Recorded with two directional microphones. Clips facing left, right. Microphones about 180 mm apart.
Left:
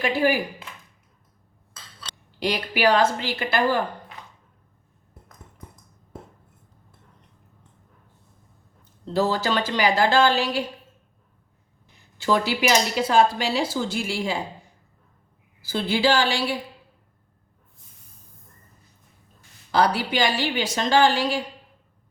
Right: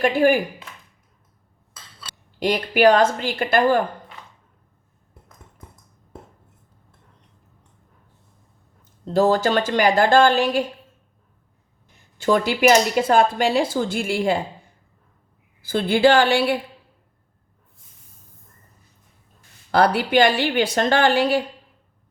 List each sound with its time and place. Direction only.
0.0 s a woman's voice: 50° right (ahead or behind)
2.4 s a woman's voice: 50° right (ahead or behind)
9.1 s a woman's voice: 50° right (ahead or behind)
11.9 s a woman's voice: 50° right (ahead or behind)
15.6 s a woman's voice: 55° right (ahead or behind)
19.7 s a woman's voice: 55° right (ahead or behind)